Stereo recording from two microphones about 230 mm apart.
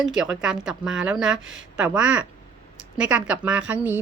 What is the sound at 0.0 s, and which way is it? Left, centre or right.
A woman's voice, centre.